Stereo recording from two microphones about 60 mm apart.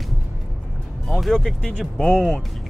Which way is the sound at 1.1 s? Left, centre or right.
Centre.